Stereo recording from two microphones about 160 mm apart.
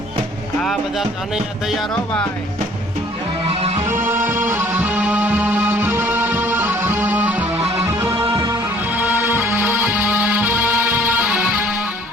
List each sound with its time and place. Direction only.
0.6 s speech: centre (ahead or behind)
3.4 s music: 35° right (ahead or behind)
3.8 s music: 15° right (ahead or behind)